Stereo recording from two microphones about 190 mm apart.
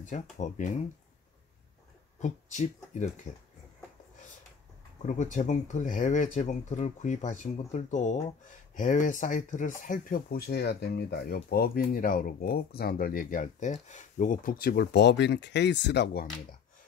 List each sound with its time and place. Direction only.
0.0 s speech: 40° left (ahead or behind)
2.1 s speech: 40° left (ahead or behind)
5.0 s speech: 40° left (ahead or behind); by 16.3 s 60° left (ahead or behind)